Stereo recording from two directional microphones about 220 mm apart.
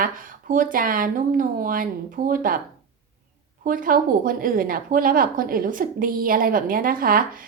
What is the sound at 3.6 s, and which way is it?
A woman's voice, 40° right (ahead or behind).